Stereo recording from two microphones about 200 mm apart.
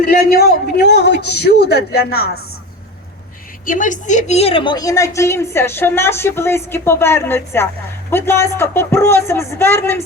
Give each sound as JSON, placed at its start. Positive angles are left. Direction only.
{"t": 0.0, "sound": "a man's voice", "side_deg": 45}
{"t": 3.7, "sound": "a woman's voice", "side_deg": 40}